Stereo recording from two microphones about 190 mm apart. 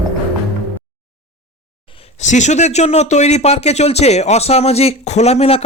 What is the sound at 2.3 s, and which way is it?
Speech, 40° left (ahead or behind).